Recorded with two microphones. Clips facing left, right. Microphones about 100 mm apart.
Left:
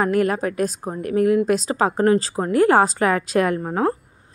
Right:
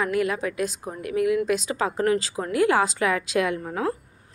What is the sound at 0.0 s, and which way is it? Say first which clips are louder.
A woman's voice: left 5 dB; 45° left (ahead or behind).